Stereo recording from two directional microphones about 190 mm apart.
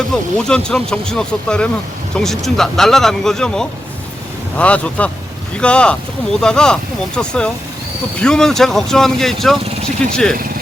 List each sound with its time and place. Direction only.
0.3 s speech: 5° left (ahead or behind)